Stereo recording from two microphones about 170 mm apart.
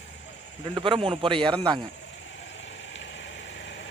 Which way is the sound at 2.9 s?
90° left.